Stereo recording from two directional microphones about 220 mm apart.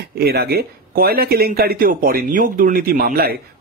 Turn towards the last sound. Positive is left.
turn(degrees=-40)  # may be behind; listen again after turning